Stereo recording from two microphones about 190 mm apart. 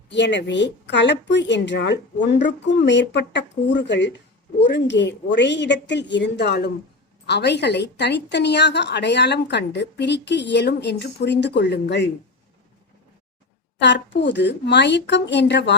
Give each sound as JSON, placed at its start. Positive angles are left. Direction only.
{"t": 0.1, "sound": "a woman's voice", "side_deg": 70}
{"t": 13.7, "sound": "a woman's voice", "side_deg": 65}